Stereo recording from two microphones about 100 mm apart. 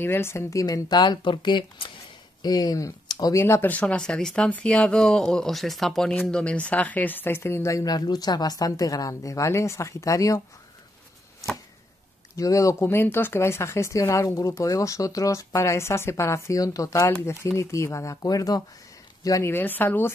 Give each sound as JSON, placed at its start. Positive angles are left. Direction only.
{"t": 0.0, "sound": "speech", "side_deg": 25}
{"t": 2.4, "sound": "speech", "side_deg": 40}
{"t": 3.3, "sound": "speech", "side_deg": 25}
{"t": 3.7, "sound": "speech", "side_deg": 10}
{"t": 11.4, "sound": "chopping", "side_deg": 35}
{"t": 12.4, "sound": "speech", "side_deg": 35}